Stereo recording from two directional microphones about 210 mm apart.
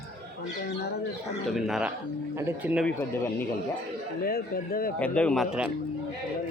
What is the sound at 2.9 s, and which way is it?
Speech, 10° left (ahead or behind).